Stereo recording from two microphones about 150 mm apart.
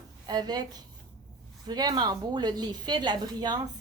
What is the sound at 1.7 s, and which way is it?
A woman's voice, 30° right (ahead or behind).